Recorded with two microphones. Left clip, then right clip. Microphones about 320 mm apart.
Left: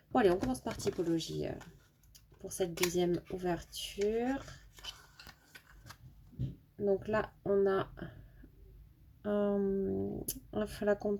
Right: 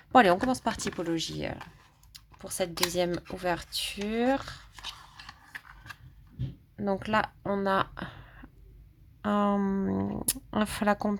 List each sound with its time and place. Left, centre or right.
0.1 s speech: right
6.8 s speech: right
9.2 s speech: right